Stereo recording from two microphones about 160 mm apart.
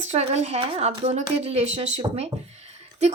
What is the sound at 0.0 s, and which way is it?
Speech, 45° right (ahead or behind).